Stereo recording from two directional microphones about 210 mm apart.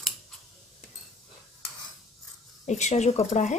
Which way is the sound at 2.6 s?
35° left (ahead or behind).